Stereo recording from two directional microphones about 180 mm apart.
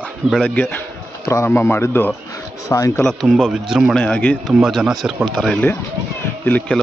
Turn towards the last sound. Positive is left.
turn(degrees=10)  # may be behind; listen again after turning